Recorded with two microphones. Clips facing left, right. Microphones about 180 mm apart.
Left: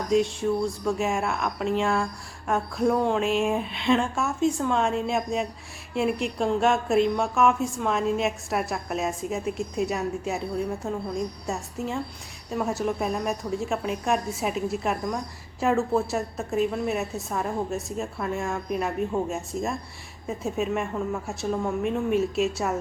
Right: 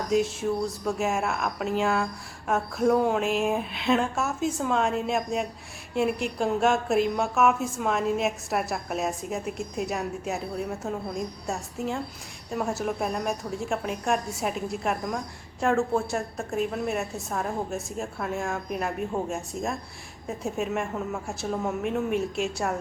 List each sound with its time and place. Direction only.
0.1 s speech: centre (ahead or behind)